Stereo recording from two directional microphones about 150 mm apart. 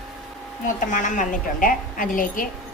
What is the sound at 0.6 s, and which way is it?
A woman's voice, 60° left (ahead or behind).